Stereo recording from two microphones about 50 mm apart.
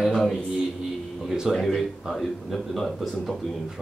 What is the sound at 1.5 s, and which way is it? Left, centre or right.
A man's voice, centre.